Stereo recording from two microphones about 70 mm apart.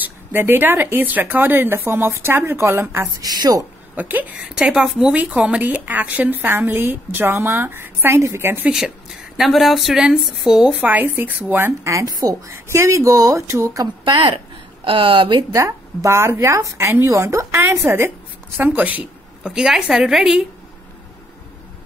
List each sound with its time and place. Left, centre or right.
0.0 s a woman's voice: right
3.2 s a woman's voice: right
3.9 s speech: right
4.6 s a woman's voice: centre
5.1 s a woman's voice: centre; by 8.5 s right
8.7 s speech: centre
10.8 s a woman's voice: right
11.8 s speech: right
15.5 s speech: right
16.8 s a woman's voice: right
17.1 s a woman's voice: right
18.6 s speech: right
19.5 s speech: centre